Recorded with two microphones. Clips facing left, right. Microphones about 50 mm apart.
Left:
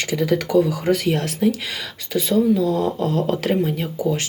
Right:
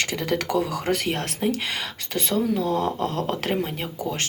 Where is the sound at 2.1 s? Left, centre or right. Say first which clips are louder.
Left 6 dB; right.